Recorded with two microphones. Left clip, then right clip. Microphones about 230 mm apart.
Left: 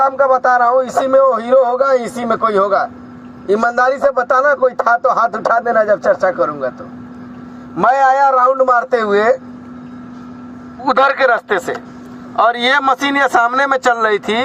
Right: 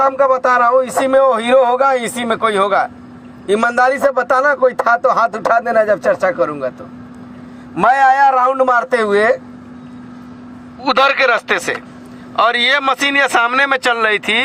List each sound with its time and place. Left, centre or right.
0.0 s a man's voice: right
7.8 s a man's voice: right
10.8 s a man's voice: right